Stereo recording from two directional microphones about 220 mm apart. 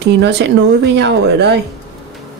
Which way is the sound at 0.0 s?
50° right (ahead or behind).